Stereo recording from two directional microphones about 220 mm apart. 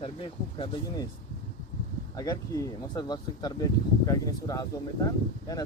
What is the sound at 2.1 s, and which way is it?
Speech, 15° left (ahead or behind).